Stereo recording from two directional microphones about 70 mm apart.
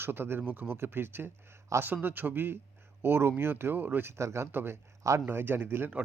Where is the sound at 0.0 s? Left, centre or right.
Right.